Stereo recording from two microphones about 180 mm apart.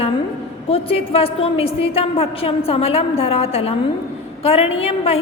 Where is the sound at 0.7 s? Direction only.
30° left (ahead or behind).